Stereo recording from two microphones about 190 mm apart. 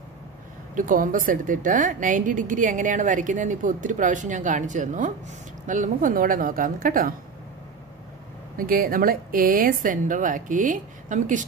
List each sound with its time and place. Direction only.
0.7 s a woman's voice: 45° right (ahead or behind)
8.5 s a woman's voice: 50° right (ahead or behind)